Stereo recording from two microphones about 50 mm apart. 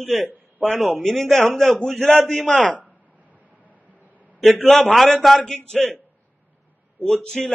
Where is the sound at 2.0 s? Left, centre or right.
Left.